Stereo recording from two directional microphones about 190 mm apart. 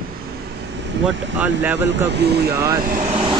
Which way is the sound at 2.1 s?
60° right (ahead or behind).